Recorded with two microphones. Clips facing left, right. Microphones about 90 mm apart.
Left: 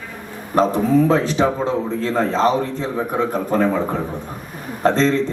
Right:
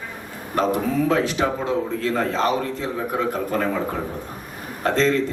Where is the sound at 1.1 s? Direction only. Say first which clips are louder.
Left 3 dB; 30° left (ahead or behind).